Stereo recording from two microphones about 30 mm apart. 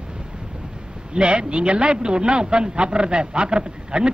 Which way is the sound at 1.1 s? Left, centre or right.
Right.